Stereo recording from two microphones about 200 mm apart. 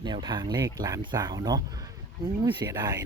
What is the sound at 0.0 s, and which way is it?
Speech, 20° right (ahead or behind).